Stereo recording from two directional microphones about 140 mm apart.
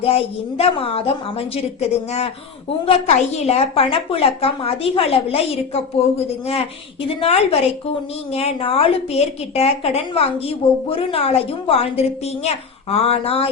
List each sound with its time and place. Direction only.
0.0 s a woman's voice: 45° left (ahead or behind)